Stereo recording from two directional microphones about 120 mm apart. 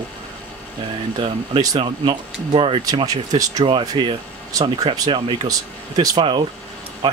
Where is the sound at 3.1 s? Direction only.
30° right (ahead or behind).